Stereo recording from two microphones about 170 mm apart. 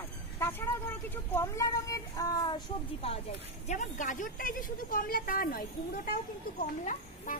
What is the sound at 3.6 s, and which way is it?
A woman's voice, 50° left (ahead or behind).